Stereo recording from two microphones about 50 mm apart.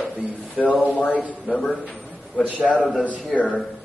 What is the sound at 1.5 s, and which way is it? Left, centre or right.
Speech, centre.